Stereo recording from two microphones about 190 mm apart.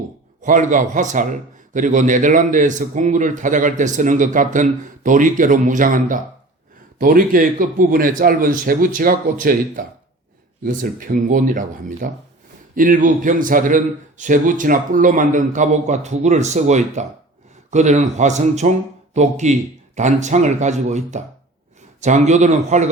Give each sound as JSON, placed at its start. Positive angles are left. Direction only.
{"t": 0.4, "sound": "a man's voice", "side_deg": -45}